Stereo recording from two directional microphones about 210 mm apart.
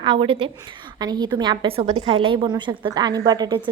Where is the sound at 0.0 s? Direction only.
25° right (ahead or behind).